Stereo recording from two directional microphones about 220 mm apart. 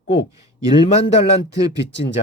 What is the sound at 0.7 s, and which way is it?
Speech, 25° left (ahead or behind).